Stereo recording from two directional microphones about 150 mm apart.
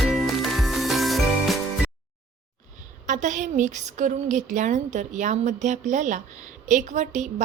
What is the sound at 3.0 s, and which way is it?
A woman's voice, 55° right (ahead or behind).